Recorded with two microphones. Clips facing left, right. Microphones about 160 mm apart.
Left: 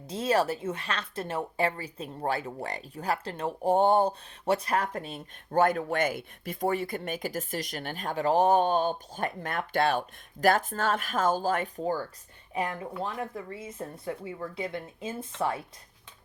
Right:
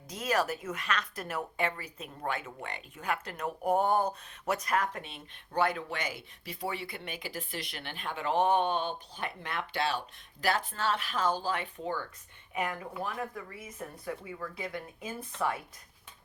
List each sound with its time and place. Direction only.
0.1 s a woman's voice: 30° left (ahead or behind)